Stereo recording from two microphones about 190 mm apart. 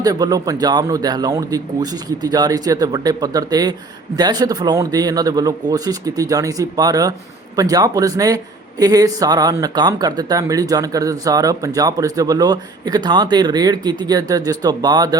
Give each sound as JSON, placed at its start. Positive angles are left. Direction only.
{"t": 0.0, "sound": "speech", "side_deg": -20}